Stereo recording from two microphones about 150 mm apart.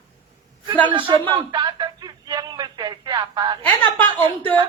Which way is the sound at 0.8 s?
35° right (ahead or behind).